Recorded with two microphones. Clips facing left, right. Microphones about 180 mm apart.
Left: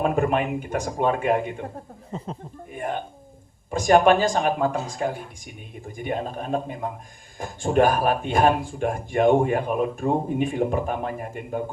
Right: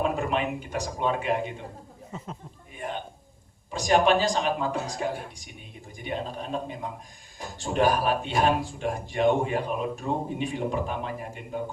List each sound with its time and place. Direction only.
0.0 s speech: 50° left (ahead or behind)
2.1 s speech: 30° left (ahead or behind)
2.7 s speech: 50° left (ahead or behind)